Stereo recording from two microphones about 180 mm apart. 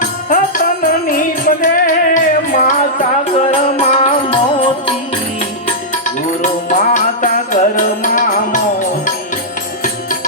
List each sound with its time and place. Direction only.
0.3 s music: 50° left (ahead or behind)
3.4 s music: 35° left (ahead or behind)
6.4 s music: 45° left (ahead or behind)